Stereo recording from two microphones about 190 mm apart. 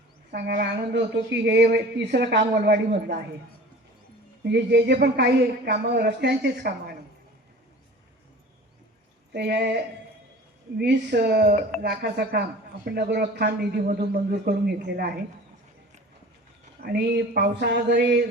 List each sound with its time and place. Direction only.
0.3 s speech: 60° right (ahead or behind)
4.4 s speech: 65° right (ahead or behind)
9.3 s speech: 60° right (ahead or behind)
16.8 s speech: 60° right (ahead or behind)